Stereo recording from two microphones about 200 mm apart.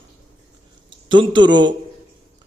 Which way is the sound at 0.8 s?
25° right (ahead or behind).